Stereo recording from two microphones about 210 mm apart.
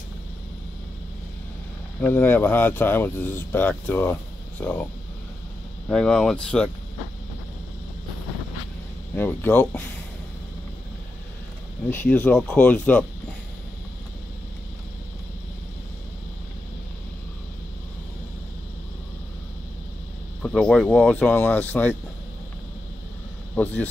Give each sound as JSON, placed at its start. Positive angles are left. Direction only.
{"t": 2.0, "sound": "speech", "side_deg": 10}
{"t": 5.9, "sound": "speech", "side_deg": 0}
{"t": 9.1, "sound": "speech", "side_deg": 10}
{"t": 11.9, "sound": "speech", "side_deg": 10}
{"t": 20.4, "sound": "speech", "side_deg": 5}
{"t": 23.5, "sound": "speech", "side_deg": 10}